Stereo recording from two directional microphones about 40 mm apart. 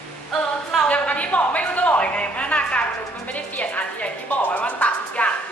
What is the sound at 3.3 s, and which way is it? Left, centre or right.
Bow-wow, left.